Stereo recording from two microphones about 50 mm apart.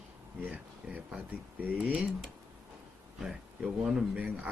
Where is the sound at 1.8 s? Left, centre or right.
Centre.